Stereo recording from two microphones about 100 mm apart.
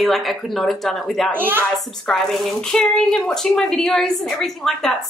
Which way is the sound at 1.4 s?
20° right (ahead or behind).